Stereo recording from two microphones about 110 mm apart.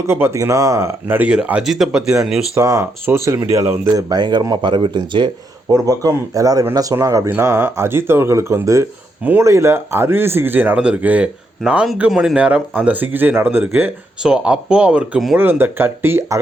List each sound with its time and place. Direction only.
0.1 s speech: 25° right (ahead or behind); by 2.4 s 5° right (ahead or behind)
2.6 s speech: 30° right (ahead or behind)
5.6 s speech: 35° right (ahead or behind); by 13.9 s 20° right (ahead or behind)
14.2 s speech: 5° right (ahead or behind); by 16.4 s 20° right (ahead or behind)